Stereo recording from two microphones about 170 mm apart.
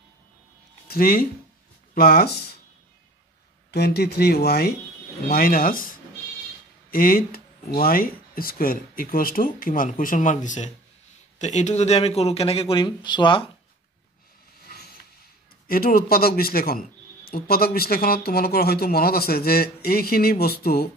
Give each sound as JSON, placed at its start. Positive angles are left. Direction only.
{"t": 0.8, "sound": "speech", "side_deg": 60}
{"t": 3.7, "sound": "speech", "side_deg": 70}
{"t": 14.6, "sound": "vehicle", "side_deg": 65}
{"t": 15.6, "sound": "speech", "side_deg": 60}